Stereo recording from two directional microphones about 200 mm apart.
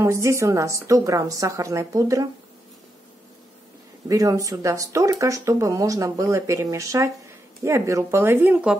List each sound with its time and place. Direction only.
0.0 s speech: 15° right (ahead or behind)
4.1 s speech: 15° right (ahead or behind)